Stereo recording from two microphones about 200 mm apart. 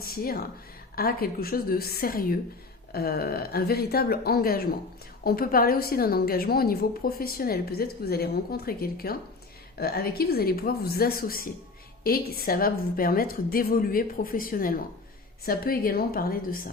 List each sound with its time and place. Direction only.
0.0 s a woman's voice: 50° left (ahead or behind)